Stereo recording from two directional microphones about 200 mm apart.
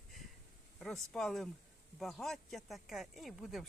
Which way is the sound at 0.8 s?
Centre (ahead or behind).